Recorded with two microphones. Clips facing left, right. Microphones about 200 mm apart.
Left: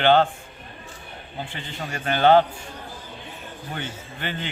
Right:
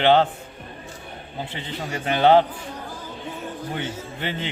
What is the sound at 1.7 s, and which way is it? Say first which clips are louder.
Speech: right 2 dB; 20° right (ahead or behind).